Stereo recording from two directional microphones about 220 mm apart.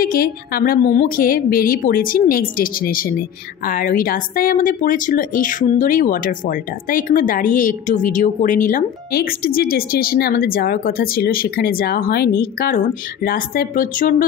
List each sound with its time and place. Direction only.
0.0 s speech: 40° left (ahead or behind)